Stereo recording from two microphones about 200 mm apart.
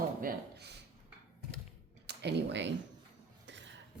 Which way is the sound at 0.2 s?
50° right (ahead or behind).